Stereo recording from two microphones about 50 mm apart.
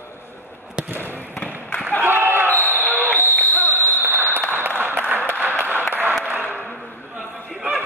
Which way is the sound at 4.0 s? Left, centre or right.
Right.